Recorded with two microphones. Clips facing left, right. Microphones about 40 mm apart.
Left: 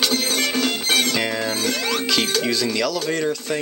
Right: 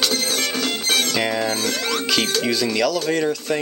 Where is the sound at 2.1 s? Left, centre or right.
Centre.